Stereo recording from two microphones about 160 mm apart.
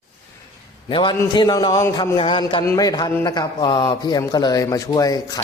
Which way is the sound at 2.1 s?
30° left (ahead or behind).